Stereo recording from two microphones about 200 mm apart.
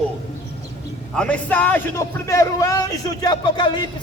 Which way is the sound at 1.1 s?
5° left (ahead or behind).